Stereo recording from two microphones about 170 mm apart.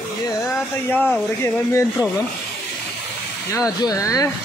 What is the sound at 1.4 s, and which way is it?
Speech, 15° left (ahead or behind).